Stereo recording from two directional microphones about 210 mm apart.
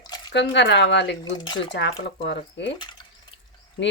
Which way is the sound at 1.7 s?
55° left (ahead or behind).